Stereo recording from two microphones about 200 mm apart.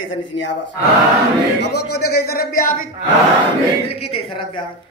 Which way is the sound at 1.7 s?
90° left.